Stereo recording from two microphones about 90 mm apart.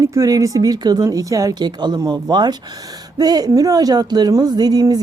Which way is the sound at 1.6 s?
55° right (ahead or behind).